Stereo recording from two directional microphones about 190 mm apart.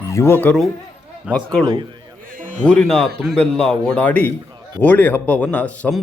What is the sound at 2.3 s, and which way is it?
Music, 45° right (ahead or behind).